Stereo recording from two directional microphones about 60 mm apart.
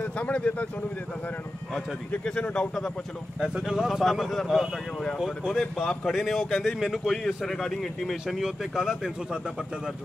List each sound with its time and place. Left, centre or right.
0.0 s speech: left
2.2 s speech: centre
3.3 s speech: centre
5.4 s speech: centre
5.9 s speech: centre